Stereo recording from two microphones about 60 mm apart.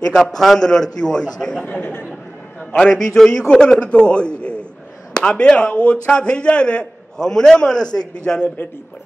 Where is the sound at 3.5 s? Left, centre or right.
Centre.